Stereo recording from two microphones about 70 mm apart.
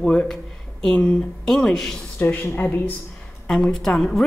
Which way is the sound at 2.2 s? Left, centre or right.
Left.